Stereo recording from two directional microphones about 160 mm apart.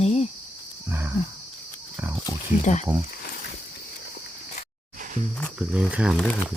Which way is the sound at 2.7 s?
50° left (ahead or behind).